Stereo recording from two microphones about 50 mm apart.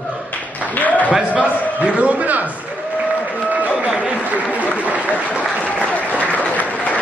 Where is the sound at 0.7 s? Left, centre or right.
Left.